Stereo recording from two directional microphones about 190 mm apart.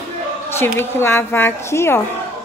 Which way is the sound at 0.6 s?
10° left (ahead or behind).